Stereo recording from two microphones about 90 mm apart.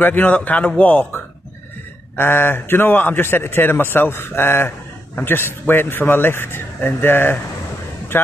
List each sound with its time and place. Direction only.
0.0 s a man's voice: 20° left (ahead or behind)